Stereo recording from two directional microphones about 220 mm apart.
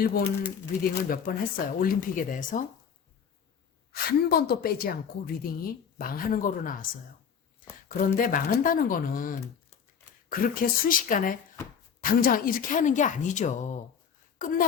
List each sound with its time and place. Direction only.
0.0 s a woman's voice: 45° left (ahead or behind)
3.9 s a woman's voice: 45° left (ahead or behind)
7.9 s a woman's voice: 40° left (ahead or behind)